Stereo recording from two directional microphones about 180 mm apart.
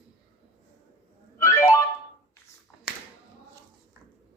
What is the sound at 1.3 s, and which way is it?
Music, 15° left (ahead or behind).